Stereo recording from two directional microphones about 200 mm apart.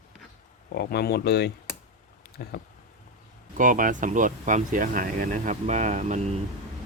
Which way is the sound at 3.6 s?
40° right (ahead or behind).